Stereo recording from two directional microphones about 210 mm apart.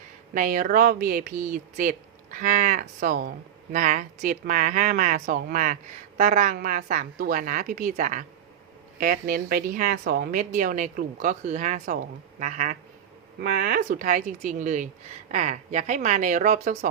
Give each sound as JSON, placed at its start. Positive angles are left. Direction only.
{"t": 0.3, "sound": "speech", "side_deg": -40}